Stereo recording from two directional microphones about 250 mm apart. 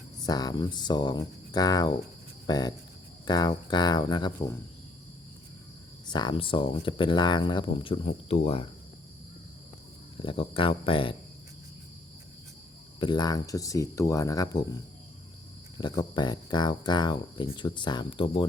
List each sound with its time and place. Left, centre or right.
0.2 s speech: centre
6.1 s speech: centre
10.2 s speech: left
13.0 s speech: centre
15.8 s speech: centre